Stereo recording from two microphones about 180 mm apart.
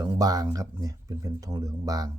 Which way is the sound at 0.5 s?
20° right (ahead or behind).